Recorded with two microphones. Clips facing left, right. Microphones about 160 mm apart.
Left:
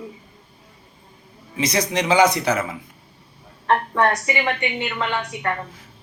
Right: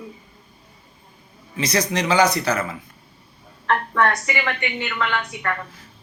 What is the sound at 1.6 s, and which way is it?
A woman's voice, 20° left (ahead or behind).